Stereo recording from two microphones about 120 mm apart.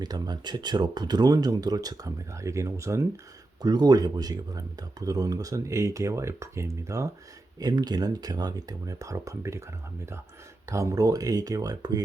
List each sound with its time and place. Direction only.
0.0 s speech: 35° right (ahead or behind)
10.7 s speech: 25° right (ahead or behind)